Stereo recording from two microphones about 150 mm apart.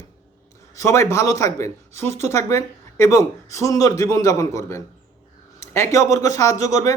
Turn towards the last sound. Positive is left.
turn(degrees=20)  # may be behind; listen again after turning